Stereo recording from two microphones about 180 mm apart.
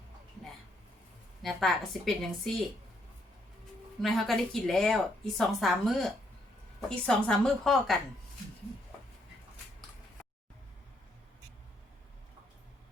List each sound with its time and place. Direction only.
1.4 s speech: centre (ahead or behind)
4.0 s speech: centre (ahead or behind)